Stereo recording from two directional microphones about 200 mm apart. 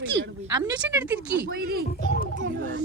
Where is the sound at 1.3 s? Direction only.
50° right (ahead or behind).